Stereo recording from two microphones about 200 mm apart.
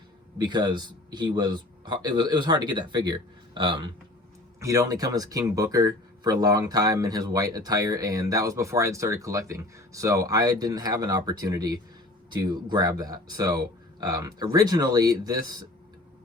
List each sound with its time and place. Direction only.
0.3 s a man's voice: 20° right (ahead or behind)